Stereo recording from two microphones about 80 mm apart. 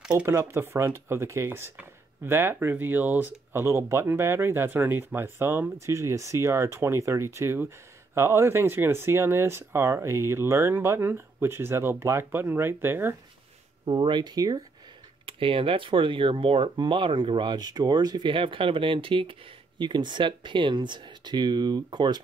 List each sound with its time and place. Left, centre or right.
0.3 s speech: right
13.8 s speech: right
15.2 s speech: right
17.6 s speech: right
19.8 s speech: right